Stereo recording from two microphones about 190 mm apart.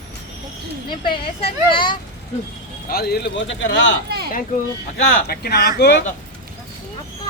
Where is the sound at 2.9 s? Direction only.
55° left (ahead or behind); by 3.7 s 75° left (ahead or behind).